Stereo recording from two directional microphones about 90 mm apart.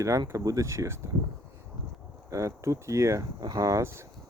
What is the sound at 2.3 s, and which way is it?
Speech, 35° right (ahead or behind).